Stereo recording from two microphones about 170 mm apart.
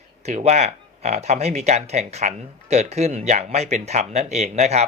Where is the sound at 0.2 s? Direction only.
40° right (ahead or behind).